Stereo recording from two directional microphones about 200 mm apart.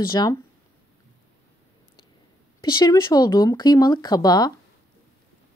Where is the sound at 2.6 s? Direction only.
20° left (ahead or behind).